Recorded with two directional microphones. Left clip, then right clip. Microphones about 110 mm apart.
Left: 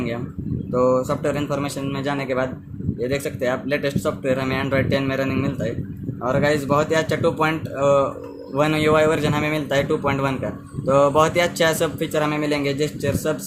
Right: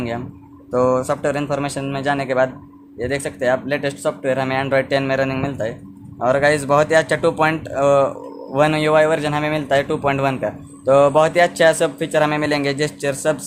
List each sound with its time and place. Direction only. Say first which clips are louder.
0.7 s speech: right 2 dB; 35° right (ahead or behind)